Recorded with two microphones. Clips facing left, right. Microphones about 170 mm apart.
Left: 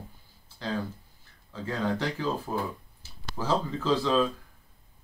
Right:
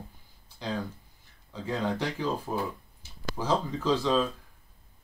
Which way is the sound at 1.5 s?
15° right (ahead or behind).